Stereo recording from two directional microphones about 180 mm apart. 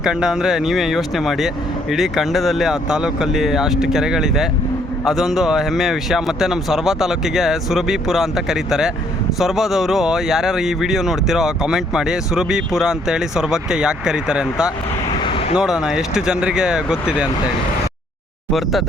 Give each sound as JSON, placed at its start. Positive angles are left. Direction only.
{"t": 0.0, "sound": "speech", "side_deg": -5}
{"t": 15.1, "sound": "vehicle", "side_deg": 25}
{"t": 15.5, "sound": "speech", "side_deg": -5}